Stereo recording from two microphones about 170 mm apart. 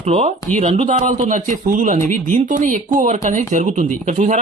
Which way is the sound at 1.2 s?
50° right (ahead or behind).